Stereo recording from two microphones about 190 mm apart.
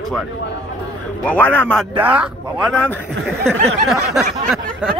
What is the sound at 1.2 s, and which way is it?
Speech, 10° left (ahead or behind).